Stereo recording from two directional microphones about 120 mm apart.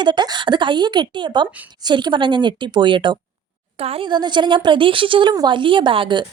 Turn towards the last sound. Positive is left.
turn(degrees=-45)  # may be behind; listen again after turning